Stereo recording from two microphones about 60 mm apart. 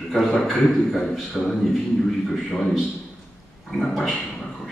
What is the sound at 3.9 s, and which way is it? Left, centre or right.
Speech, centre.